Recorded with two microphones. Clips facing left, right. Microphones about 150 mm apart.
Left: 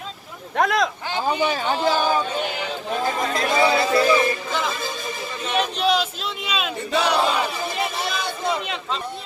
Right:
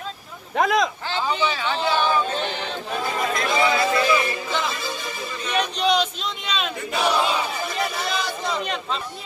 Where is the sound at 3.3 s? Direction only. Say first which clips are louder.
Left 2 dB; 35° left (ahead or behind).